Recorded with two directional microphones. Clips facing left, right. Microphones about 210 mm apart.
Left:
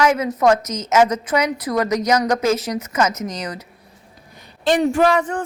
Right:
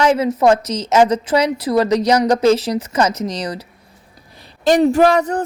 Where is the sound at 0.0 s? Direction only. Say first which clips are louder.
Right 3 dB; 30° right (ahead or behind).